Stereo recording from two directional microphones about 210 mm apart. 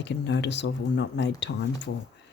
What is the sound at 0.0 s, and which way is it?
Speech, 55° left (ahead or behind).